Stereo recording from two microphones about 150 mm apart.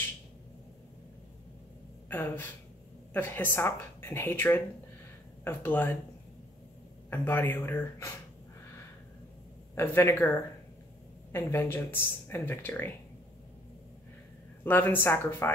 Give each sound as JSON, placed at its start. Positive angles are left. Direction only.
{"t": 2.0, "sound": "speech", "side_deg": 15}
{"t": 7.1, "sound": "speech", "side_deg": 10}
{"t": 9.8, "sound": "speech", "side_deg": 15}
{"t": 11.3, "sound": "speech", "side_deg": 15}
{"t": 14.6, "sound": "speech", "side_deg": 15}